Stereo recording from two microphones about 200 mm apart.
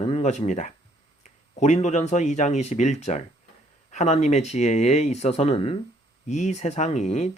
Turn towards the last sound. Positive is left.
turn(degrees=35)  # may be behind; listen again after turning